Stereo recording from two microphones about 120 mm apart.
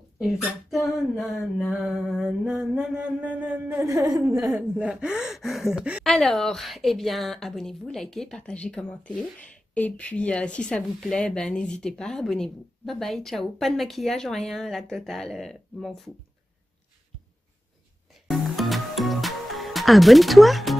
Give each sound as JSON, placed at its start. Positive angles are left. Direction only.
{"t": 0.2, "sound": "a woman's voice", "side_deg": 0}
{"t": 1.6, "sound": "mantra", "side_deg": -5}
{"t": 4.6, "sound": "mantra", "side_deg": -10}
{"t": 6.0, "sound": "a woman's voice", "side_deg": 0}
{"t": 18.3, "sound": "music", "side_deg": 0}